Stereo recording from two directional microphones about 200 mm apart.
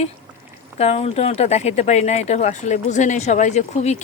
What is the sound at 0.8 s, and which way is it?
Speech, 30° left (ahead or behind).